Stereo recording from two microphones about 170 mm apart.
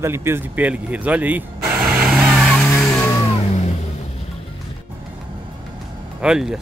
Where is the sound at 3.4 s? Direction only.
40° left (ahead or behind).